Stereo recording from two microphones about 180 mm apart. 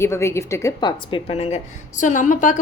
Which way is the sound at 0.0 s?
15° left (ahead or behind).